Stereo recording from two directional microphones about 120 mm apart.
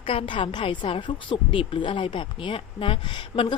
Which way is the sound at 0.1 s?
50° left (ahead or behind).